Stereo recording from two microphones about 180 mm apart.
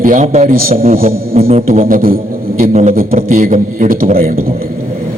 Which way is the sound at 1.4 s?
35° right (ahead or behind).